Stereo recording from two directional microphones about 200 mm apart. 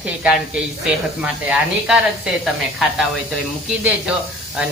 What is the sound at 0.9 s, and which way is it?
Speech, 5° right (ahead or behind).